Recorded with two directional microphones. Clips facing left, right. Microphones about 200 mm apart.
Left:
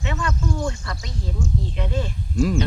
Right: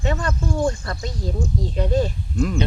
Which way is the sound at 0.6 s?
50° right (ahead or behind).